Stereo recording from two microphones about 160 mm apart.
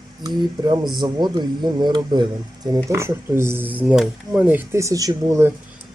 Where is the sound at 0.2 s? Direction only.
25° right (ahead or behind).